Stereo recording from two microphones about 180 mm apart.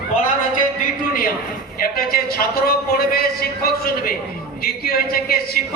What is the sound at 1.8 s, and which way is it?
A man's voice, 55° left (ahead or behind).